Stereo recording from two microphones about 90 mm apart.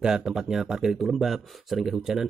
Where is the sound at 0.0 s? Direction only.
5° right (ahead or behind).